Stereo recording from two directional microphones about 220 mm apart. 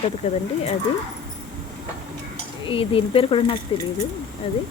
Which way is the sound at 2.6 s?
25° left (ahead or behind).